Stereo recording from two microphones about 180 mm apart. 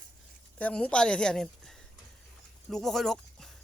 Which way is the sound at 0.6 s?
10° left (ahead or behind).